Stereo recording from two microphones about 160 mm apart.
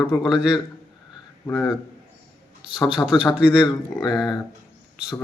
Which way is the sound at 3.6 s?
25° left (ahead or behind).